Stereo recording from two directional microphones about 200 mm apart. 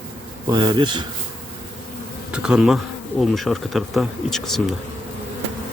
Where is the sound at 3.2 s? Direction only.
Centre (ahead or behind).